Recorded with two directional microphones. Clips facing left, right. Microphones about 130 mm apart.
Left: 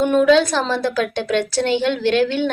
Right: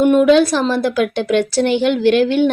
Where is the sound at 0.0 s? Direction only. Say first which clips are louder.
Right 3 dB; 10° right (ahead or behind).